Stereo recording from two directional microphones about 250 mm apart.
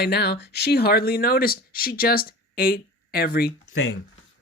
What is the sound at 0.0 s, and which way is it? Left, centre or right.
Speech, left.